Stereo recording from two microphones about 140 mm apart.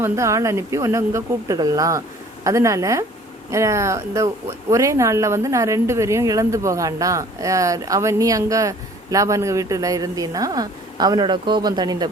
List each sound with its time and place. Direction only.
0.0 s speech: 20° right (ahead or behind)